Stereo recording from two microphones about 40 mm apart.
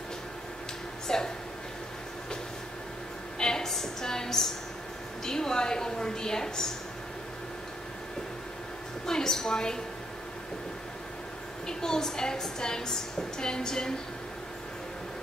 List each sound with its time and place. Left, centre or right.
1.0 s speech: centre
3.3 s a sound: centre
5.2 s a woman's voice: centre
9.0 s a woman's voice: centre
11.6 s a woman's voice: centre